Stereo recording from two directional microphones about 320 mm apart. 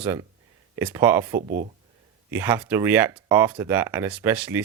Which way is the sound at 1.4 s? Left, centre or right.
Right.